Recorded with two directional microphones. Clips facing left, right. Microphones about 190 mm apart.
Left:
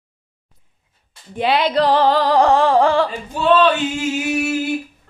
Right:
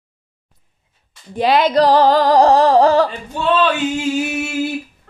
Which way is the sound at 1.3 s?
40° right (ahead or behind).